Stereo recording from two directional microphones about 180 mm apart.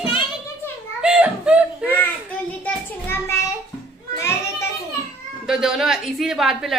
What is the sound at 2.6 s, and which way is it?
Speech, 15° left (ahead or behind).